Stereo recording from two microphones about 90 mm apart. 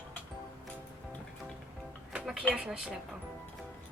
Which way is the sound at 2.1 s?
10° right (ahead or behind).